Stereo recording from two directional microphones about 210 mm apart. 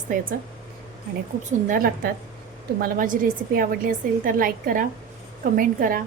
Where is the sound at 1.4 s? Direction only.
40° right (ahead or behind).